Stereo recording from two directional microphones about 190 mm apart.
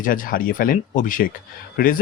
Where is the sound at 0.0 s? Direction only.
45° left (ahead or behind).